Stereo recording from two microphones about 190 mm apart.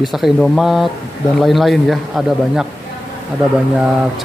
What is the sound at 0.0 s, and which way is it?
Speech, centre (ahead or behind).